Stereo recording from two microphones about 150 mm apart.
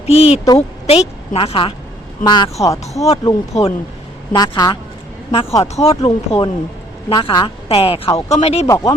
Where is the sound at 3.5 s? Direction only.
45° left (ahead or behind).